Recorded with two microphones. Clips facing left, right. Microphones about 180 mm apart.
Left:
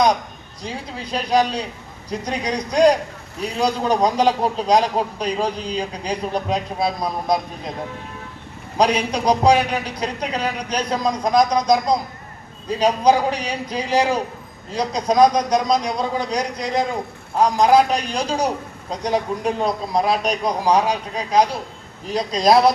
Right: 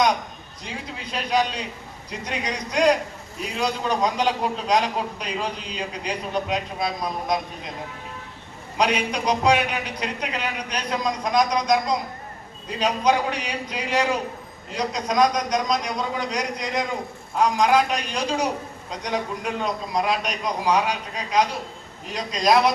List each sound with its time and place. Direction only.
0.6 s a man's voice: 35° left (ahead or behind)
8.8 s a man's voice: 35° left (ahead or behind)
22.1 s a man's voice: 35° left (ahead or behind)